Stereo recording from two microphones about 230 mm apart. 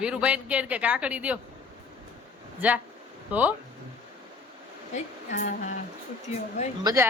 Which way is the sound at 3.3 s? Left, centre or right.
Centre.